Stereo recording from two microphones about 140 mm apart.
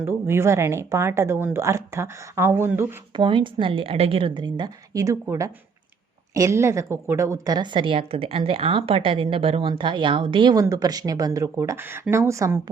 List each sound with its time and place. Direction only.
0.0 s a woman's voice: 20° right (ahead or behind)
3.2 s a woman's voice: 35° right (ahead or behind); by 12.5 s 20° right (ahead or behind)